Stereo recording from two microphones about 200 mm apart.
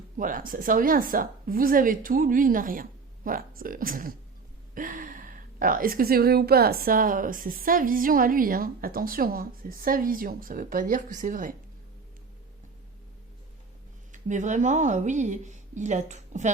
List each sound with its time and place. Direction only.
0.2 s speech: 45° right (ahead or behind)
14.1 s speech: 35° right (ahead or behind)